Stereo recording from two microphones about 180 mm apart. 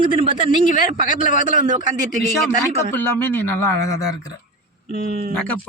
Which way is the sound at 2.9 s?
10° left (ahead or behind).